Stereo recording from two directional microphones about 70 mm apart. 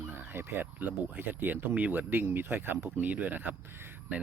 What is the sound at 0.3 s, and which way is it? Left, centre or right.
Speech, right.